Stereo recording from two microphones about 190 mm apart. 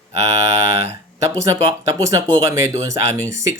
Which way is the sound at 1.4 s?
15° right (ahead or behind).